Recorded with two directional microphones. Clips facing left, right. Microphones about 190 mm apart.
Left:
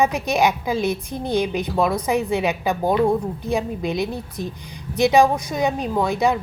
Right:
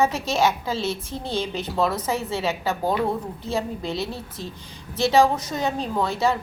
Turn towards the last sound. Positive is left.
turn(degrees=15)  # may be behind; listen again after turning